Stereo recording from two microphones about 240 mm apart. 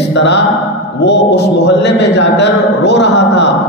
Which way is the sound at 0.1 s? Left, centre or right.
Left.